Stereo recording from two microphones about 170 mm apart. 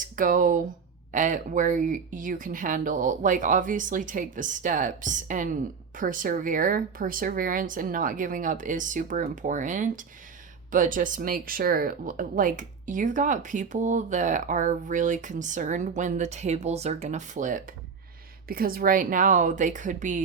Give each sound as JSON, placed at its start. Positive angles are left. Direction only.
{"t": 0.2, "sound": "speech", "side_deg": -50}
{"t": 18.4, "sound": "speech", "side_deg": -60}